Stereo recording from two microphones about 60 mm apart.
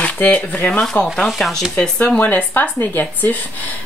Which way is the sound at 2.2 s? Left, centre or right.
Left.